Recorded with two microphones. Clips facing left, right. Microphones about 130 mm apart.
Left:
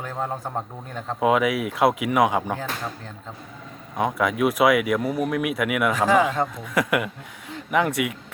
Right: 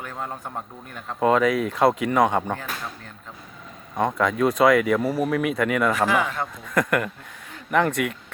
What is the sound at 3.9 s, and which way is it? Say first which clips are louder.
Speech: right 1 dB; 10° left (ahead or behind).